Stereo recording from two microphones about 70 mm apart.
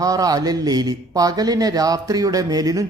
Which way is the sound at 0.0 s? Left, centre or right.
Right.